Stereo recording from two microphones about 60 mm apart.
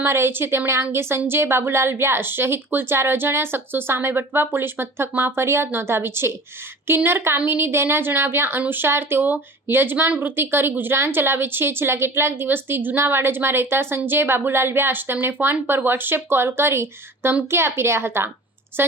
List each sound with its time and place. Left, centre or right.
0.0 s a woman's voice: right